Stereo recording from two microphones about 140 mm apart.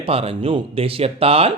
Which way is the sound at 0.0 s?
40° right (ahead or behind).